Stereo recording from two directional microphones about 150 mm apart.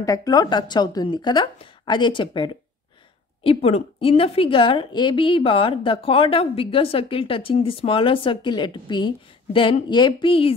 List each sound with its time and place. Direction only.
0.0 s a woman's voice: 25° left (ahead or behind)